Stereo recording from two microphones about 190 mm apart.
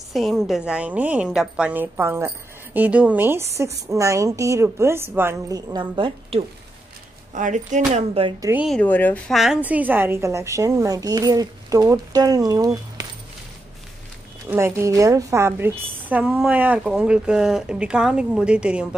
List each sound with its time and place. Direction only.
0.1 s a woman's voice: centre (ahead or behind); by 6.4 s 25° right (ahead or behind)
7.3 s speech: 40° right (ahead or behind)
8.4 s a woman's voice: 15° right (ahead or behind)
8.6 s speech: 5° left (ahead or behind)
9.4 s a woman's voice: 5° right (ahead or behind)
14.5 s a woman's voice: 15° right (ahead or behind)